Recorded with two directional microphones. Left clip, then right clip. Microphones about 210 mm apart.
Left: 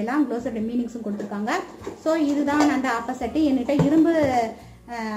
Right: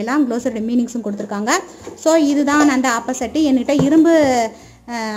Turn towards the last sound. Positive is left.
turn(degrees=-50)  # may be behind; listen again after turning